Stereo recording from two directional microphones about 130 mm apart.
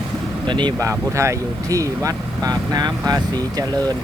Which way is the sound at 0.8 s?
25° right (ahead or behind).